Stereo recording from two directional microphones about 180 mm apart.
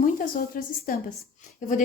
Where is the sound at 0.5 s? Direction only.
50° left (ahead or behind).